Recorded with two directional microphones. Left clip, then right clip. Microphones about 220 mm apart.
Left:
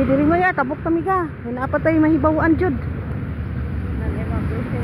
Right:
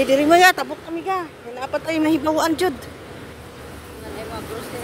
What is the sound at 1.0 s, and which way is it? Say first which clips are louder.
Speech: left 4 dB; 5° right (ahead or behind).